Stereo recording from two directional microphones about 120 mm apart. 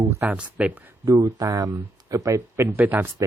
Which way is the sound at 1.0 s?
30° right (ahead or behind).